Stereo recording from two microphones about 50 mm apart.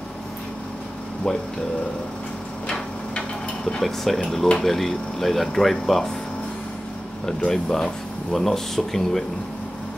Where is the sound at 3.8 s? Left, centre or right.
Centre.